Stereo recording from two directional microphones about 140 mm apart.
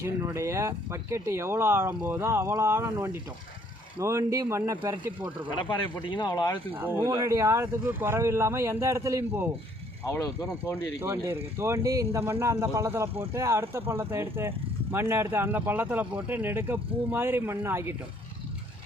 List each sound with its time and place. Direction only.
0.0 s speech: 20° right (ahead or behind)
5.5 s speech: 35° left (ahead or behind)
6.7 s speech: 15° right (ahead or behind)
10.1 s speech: 25° left (ahead or behind)
11.0 s speech: 15° right (ahead or behind)